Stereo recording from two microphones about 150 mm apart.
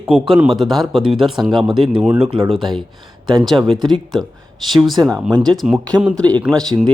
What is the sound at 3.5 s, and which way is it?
Speech, 35° right (ahead or behind).